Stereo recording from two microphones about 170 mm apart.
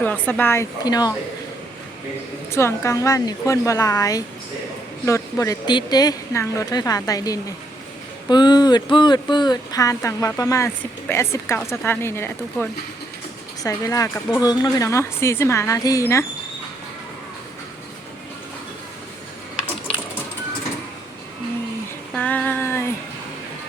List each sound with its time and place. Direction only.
0.0 s a woman's voice: 10° left (ahead or behind)
2.5 s a woman's voice: 15° left (ahead or behind)
22.1 s a sound: 5° left (ahead or behind)